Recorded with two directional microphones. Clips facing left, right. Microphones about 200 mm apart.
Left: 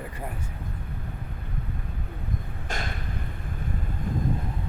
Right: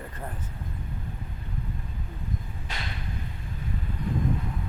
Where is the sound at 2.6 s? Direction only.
45° left (ahead or behind).